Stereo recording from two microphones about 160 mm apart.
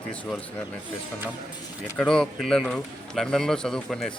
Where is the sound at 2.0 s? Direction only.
5° left (ahead or behind).